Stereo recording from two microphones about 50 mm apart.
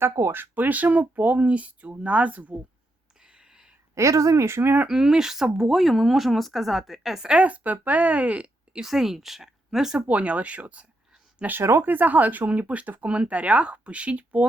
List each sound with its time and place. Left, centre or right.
0.3 s speech: right
3.2 s a sound: centre
3.9 s speech: right
4.9 s a woman's voice: centre
7.3 s speech: right
8.8 s speech: centre
10.1 s speech: right
11.8 s speech: right